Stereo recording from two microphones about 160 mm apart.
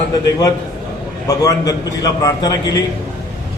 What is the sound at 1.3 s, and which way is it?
A man's voice, 20° left (ahead or behind).